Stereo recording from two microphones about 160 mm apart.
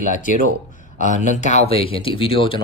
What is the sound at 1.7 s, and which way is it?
Speech, 35° left (ahead or behind).